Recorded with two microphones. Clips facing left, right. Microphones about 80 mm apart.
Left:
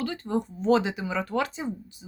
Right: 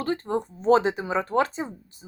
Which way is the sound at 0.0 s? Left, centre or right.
Right.